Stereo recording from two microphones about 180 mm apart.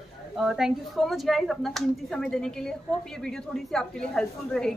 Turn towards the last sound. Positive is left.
turn(degrees=5)  # may be behind; listen again after turning